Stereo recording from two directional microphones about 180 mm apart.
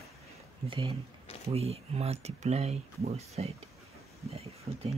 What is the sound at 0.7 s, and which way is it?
Speech, 30° right (ahead or behind).